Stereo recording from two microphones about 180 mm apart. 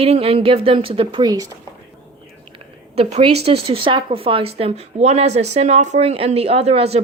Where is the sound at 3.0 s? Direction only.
35° right (ahead or behind).